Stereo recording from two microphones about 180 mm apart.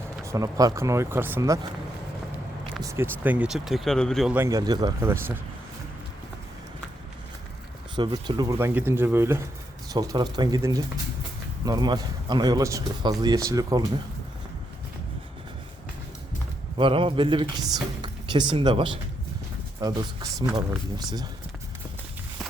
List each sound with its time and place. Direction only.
0.3 s speech: 20° right (ahead or behind)
2.8 s speech: 15° right (ahead or behind); by 4.4 s centre (ahead or behind)
4.4 s speech: 20° right (ahead or behind)
7.9 s speech: 25° right (ahead or behind)
16.7 s speech: 30° right (ahead or behind)
20.6 s speech: 20° right (ahead or behind)